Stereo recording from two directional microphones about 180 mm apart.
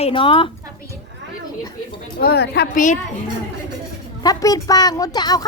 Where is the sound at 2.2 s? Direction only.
60° left (ahead or behind).